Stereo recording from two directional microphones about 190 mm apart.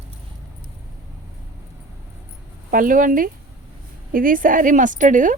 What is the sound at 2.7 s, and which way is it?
A woman's voice, 45° right (ahead or behind).